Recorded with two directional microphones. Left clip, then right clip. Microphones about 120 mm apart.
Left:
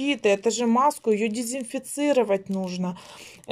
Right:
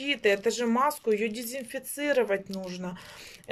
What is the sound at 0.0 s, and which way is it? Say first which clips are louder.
A woman's voice: left 3 dB; 25° left (ahead or behind).